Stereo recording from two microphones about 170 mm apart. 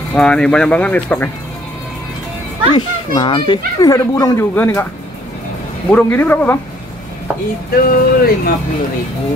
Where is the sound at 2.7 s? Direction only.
30° left (ahead or behind).